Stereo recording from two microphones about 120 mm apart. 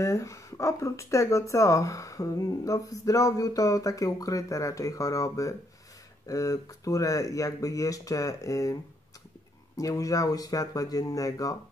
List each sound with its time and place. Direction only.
0.0 s speech: 25° left (ahead or behind)
9.8 s speech: 30° left (ahead or behind)